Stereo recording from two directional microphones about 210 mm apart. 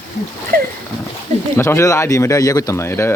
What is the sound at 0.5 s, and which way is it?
Dog, 45° right (ahead or behind).